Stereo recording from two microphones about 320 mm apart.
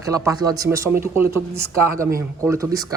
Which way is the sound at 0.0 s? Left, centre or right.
Centre.